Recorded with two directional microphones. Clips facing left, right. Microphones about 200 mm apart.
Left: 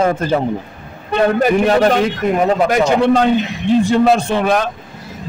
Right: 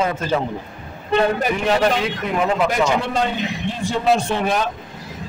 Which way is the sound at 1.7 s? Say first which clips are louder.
Left 5 dB; 50° left (ahead or behind).